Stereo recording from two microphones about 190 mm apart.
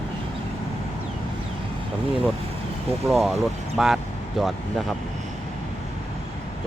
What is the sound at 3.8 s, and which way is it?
Speech, centre (ahead or behind).